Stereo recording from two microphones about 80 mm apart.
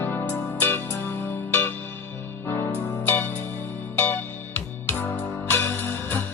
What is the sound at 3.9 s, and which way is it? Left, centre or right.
Music, left.